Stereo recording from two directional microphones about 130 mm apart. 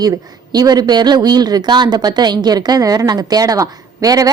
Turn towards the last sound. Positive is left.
turn(degrees=-25)  # may be behind; listen again after turning